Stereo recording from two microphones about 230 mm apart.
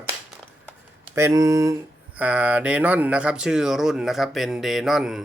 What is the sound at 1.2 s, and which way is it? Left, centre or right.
Speech, centre.